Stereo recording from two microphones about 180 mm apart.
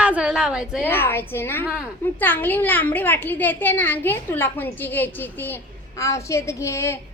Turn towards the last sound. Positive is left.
turn(degrees=15)  # may be behind; listen again after turning